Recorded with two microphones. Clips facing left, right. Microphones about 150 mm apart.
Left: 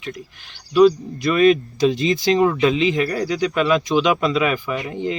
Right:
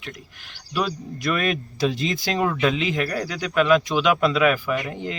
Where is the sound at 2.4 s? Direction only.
10° left (ahead or behind).